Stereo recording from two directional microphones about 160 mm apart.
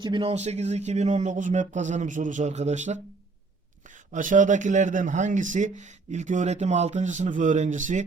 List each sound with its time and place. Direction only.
0.0 s speech: 30° right (ahead or behind); by 8.0 s 50° right (ahead or behind)